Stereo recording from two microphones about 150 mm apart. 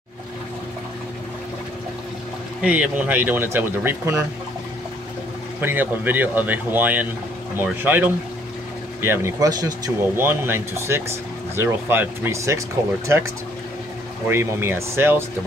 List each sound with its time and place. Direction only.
2.6 s speech: 10° right (ahead or behind)
5.6 s speech: 10° right (ahead or behind)
10.1 s speech: 15° right (ahead or behind)
14.2 s speech: 15° right (ahead or behind)